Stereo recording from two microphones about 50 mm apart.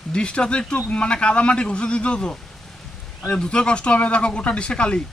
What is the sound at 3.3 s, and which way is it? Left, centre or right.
Speech, centre.